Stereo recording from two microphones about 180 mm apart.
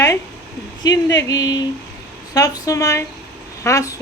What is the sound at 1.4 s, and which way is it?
Speech, 80° left.